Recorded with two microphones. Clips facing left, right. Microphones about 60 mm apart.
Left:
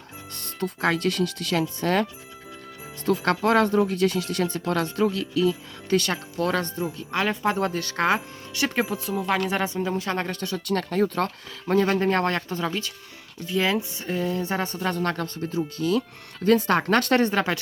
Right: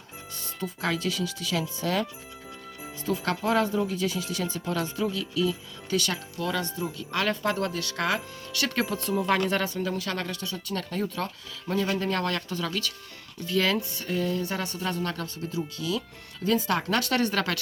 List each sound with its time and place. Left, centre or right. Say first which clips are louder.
0.3 s speech: left 5 dB; left
3.1 s speech: left 5 dB; left
6.9 s speech: left 1 dB; left
8.6 s speech: left 3 dB; centre
9.6 s speech: left 3 dB; left
10.3 s speech: left 6 dB; left
10.8 s speech: left 7 dB; left
13.5 s speech: left 2 dB; centre; by 17.2 s left
17.2 s speech: left 4 dB; left